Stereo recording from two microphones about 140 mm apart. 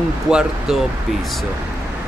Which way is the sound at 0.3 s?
5° right (ahead or behind).